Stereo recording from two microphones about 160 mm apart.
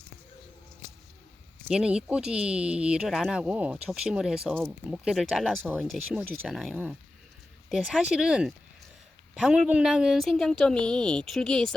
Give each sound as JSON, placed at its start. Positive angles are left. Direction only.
{"t": 1.6, "sound": "speech", "side_deg": -5}